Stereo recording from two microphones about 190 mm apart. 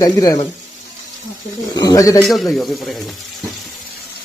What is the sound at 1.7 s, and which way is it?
Speech, 20° left (ahead or behind).